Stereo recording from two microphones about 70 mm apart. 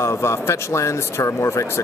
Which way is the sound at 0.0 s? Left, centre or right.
Left.